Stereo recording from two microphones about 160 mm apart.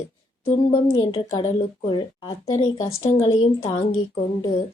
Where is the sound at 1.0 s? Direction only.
30° left (ahead or behind).